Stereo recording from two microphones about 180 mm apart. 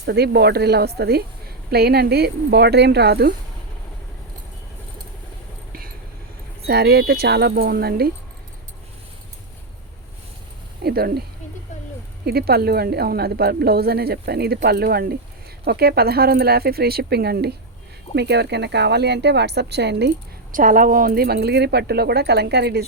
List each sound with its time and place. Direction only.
0.0 s a woman's voice: 65° right (ahead or behind)
6.7 s a woman's voice: 65° right (ahead or behind)
10.8 s a woman's voice: 60° right (ahead or behind)
12.2 s a woman's voice: 60° right (ahead or behind)
20.5 s a woman's voice: 50° right (ahead or behind); by 22.9 s 65° right (ahead or behind)